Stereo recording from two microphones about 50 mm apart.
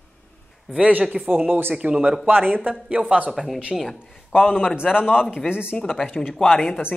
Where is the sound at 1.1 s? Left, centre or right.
Centre.